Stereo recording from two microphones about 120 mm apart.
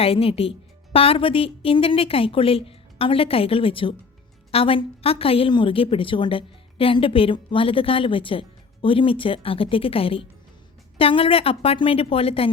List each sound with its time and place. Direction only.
0.0 s a woman's voice: 55° left (ahead or behind)